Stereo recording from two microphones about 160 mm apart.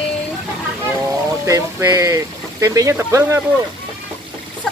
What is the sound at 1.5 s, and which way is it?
Speech, 20° right (ahead or behind).